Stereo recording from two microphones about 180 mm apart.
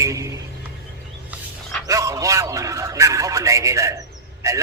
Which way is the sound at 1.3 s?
5° right (ahead or behind).